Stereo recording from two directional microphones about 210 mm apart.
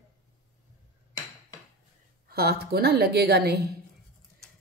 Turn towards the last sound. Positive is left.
turn(degrees=-50)  # may be behind; listen again after turning